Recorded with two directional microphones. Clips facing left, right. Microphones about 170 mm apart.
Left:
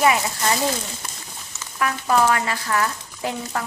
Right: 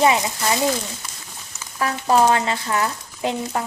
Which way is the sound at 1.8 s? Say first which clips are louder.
Right 2 dB; 30° right (ahead or behind).